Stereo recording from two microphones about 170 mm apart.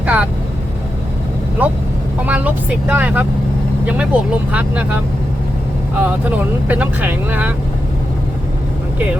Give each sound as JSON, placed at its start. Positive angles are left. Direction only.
{"t": 0.0, "sound": "vehicle", "side_deg": -5}
{"t": 1.6, "sound": "speech", "side_deg": -10}
{"t": 6.0, "sound": "speech", "side_deg": -10}